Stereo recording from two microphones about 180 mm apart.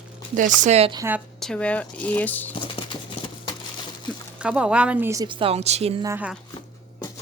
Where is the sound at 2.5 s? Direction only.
30° left (ahead or behind).